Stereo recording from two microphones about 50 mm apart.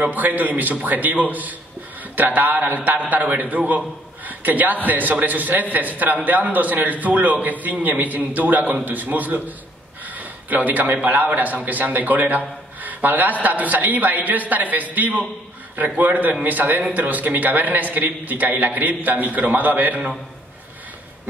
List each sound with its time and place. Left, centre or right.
0.0 s a man's voice: right